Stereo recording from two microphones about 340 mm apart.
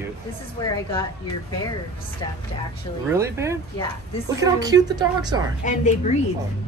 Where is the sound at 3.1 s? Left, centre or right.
Centre.